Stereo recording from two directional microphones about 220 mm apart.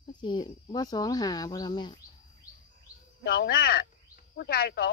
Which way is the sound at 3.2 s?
45° left (ahead or behind).